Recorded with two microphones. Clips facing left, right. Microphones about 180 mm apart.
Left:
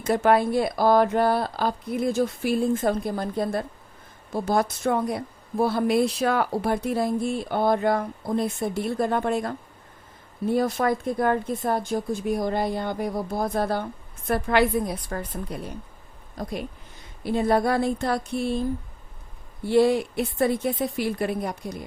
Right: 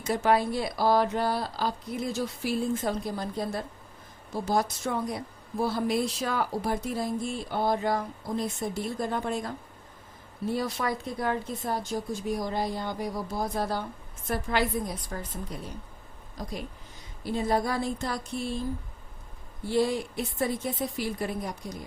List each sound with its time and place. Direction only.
0.0 s a woman's voice: 55° left (ahead or behind)
10.5 s a woman's voice: 50° left (ahead or behind)
19.6 s a woman's voice: 65° left (ahead or behind)